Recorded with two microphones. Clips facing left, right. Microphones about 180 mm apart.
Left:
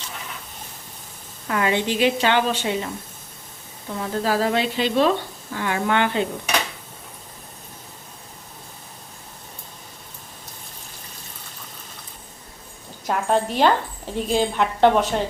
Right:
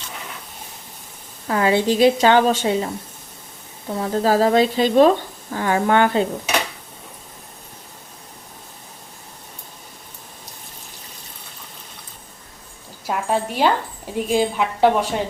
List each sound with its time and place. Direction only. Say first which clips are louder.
1.5 s a woman's voice: right 4 dB; 35° right (ahead or behind)
13.1 s speech: left 1 dB; 5° right (ahead or behind)